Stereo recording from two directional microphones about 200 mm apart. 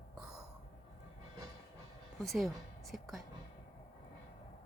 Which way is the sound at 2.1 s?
Centre (ahead or behind).